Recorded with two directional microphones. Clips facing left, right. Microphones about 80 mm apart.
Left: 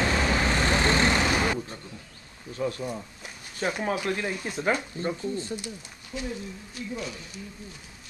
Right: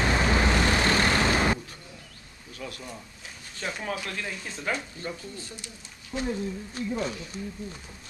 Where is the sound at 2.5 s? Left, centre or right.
Left.